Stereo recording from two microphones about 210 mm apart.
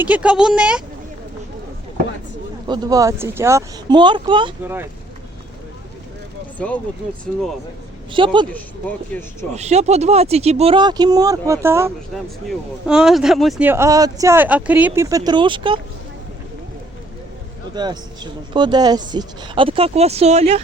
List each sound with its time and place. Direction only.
0.0 s speech: 5° right (ahead or behind)
2.6 s speech: 20° right (ahead or behind)
4.6 s speech: 10° right (ahead or behind)
6.6 s speech: 5° left (ahead or behind)
8.1 s speech: 25° right (ahead or behind)
9.6 s speech: 30° right (ahead or behind); by 11.9 s 10° right (ahead or behind)
12.1 s speech: centre (ahead or behind); by 15.8 s 25° right (ahead or behind)
17.7 s speech: 20° right (ahead or behind)